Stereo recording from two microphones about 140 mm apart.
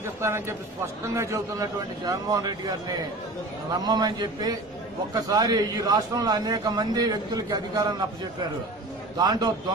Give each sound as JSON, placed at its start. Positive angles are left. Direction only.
{"t": 0.0, "sound": "a man's voice", "side_deg": -20}
{"t": 3.7, "sound": "a man's voice", "side_deg": -30}
{"t": 9.2, "sound": "a man's voice", "side_deg": -30}